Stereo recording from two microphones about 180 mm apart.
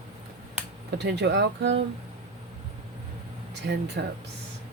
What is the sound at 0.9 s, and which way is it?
Speech, 70° right (ahead or behind).